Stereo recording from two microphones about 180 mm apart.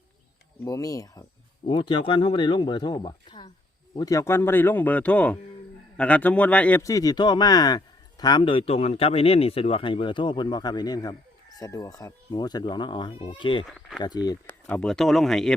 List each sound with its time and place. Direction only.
0.6 s a man's voice: 20° left (ahead or behind)
13.7 s speech: centre (ahead or behind)
14.0 s speech: 25° left (ahead or behind)
14.4 s speech: 10° left (ahead or behind)